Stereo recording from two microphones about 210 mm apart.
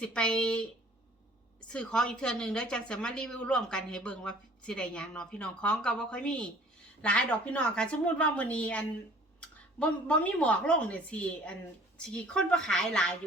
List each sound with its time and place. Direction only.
0.0 s a woman's voice: 5° left (ahead or behind)
1.6 s a woman's voice: 5° left (ahead or behind)